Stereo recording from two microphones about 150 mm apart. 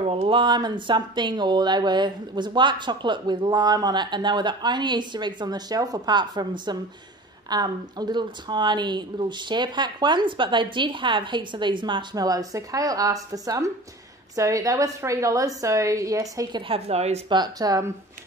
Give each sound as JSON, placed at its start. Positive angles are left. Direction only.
{"t": 0.0, "sound": "speech", "side_deg": -40}
{"t": 16.6, "sound": "speech", "side_deg": -40}
{"t": 17.3, "sound": "speech", "side_deg": -25}